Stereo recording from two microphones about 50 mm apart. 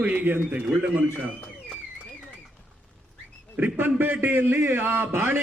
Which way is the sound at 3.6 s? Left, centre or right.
Right.